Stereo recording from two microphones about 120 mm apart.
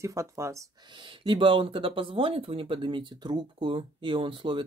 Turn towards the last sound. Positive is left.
turn(degrees=-45)  # may be behind; listen again after turning